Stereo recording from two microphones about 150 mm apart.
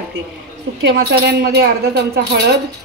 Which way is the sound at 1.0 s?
90° right.